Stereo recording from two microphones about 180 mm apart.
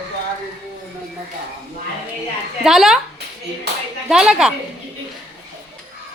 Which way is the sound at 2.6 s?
Centre (ahead or behind).